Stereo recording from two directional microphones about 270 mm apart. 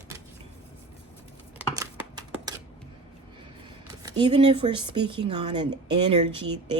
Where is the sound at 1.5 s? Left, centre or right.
Centre.